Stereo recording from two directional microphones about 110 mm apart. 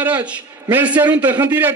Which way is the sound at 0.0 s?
15° right (ahead or behind).